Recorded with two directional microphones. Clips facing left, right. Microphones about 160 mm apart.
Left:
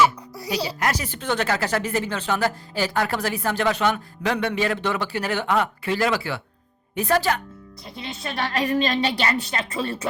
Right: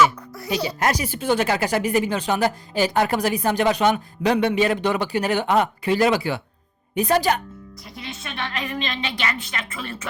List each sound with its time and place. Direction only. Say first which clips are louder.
0.5 s a woman's voice: right 2 dB; 30° left (ahead or behind)
0.8 s speech: right 5 dB; 25° right (ahead or behind)
1.0 s speech: right 3 dB; 10° right (ahead or behind)
7.9 s a woman's voice: left 3 dB; 30° left (ahead or behind)